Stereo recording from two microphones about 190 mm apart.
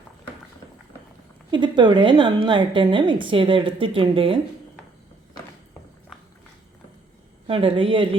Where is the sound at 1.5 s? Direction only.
25° right (ahead or behind).